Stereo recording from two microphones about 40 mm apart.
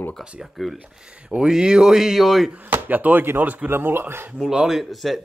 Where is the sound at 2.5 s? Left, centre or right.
Right.